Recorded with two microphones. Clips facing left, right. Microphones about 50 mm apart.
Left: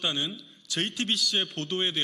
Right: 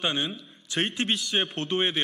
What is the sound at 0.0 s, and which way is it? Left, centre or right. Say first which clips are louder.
A man's voice: right 2 dB; right.